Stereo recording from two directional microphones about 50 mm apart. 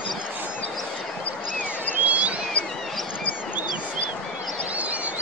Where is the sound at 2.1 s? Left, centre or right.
Right.